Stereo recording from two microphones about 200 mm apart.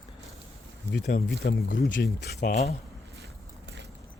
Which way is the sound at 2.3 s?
35° left (ahead or behind).